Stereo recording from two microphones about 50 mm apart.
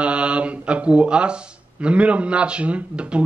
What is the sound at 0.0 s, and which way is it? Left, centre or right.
Mantra, right.